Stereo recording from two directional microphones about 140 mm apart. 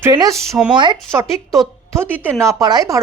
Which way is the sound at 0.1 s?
25° right (ahead or behind).